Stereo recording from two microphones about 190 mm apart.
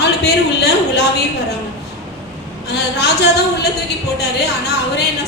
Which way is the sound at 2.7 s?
60° left (ahead or behind).